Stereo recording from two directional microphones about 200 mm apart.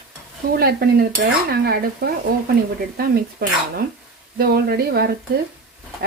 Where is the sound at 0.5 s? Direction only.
50° right (ahead or behind).